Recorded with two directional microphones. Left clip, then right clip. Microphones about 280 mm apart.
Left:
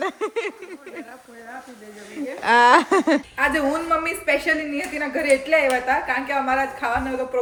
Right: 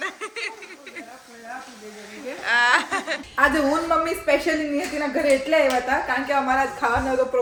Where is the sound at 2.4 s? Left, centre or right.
Centre.